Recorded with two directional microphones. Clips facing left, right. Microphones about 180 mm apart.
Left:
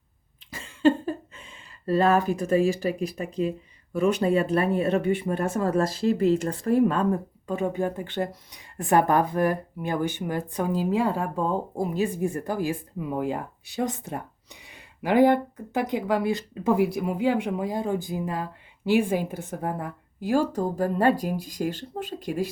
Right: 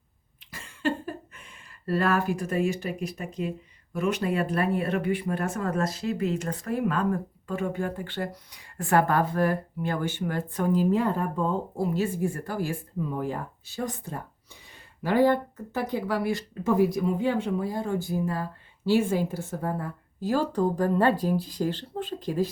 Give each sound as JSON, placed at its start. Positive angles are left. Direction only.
{"t": 0.5, "sound": "cough", "side_deg": 25}
{"t": 2.0, "sound": "speech", "side_deg": 20}